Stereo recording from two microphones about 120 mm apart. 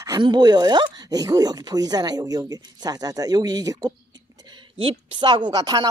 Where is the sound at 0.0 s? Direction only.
35° right (ahead or behind).